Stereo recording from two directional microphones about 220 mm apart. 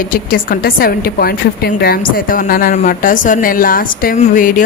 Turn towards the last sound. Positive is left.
turn(degrees=35)  # may be behind; listen again after turning